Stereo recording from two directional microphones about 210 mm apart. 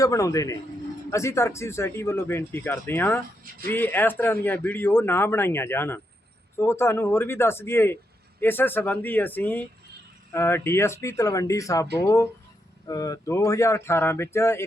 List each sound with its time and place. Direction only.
0.0 s speech: 15° left (ahead or behind)